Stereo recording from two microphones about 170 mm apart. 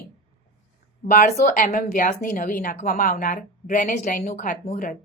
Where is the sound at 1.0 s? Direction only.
60° left (ahead or behind).